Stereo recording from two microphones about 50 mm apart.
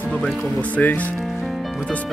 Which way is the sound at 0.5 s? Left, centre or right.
Left.